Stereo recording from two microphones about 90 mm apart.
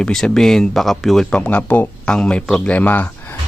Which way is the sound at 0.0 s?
5° left (ahead or behind).